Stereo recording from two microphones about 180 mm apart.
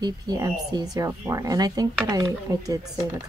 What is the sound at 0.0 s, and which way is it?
Speech, 20° right (ahead or behind).